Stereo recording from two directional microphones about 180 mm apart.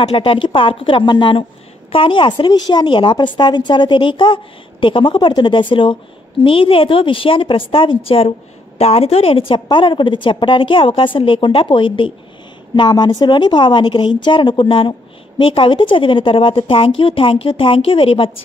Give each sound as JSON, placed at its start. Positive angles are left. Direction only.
{"t": 0.0, "sound": "speech", "side_deg": 35}